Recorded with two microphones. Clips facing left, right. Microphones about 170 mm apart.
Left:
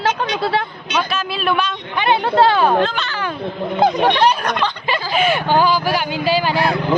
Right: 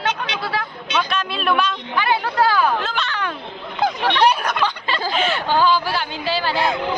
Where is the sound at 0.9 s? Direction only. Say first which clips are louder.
Left 2 dB; 5° left (ahead or behind).